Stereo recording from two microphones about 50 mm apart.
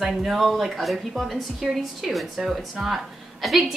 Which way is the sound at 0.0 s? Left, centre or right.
Centre.